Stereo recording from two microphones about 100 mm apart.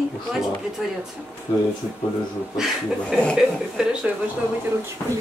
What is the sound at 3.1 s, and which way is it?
Speech, 10° left (ahead or behind).